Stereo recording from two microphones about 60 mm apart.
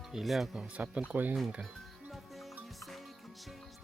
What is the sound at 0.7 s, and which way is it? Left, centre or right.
Speech, right.